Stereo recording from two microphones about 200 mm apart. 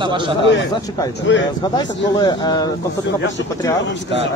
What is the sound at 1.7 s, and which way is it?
Speech, 20° left (ahead or behind).